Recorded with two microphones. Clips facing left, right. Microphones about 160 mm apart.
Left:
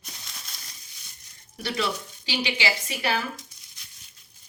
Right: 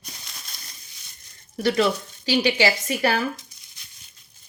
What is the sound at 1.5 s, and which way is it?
Speech, 45° right (ahead or behind).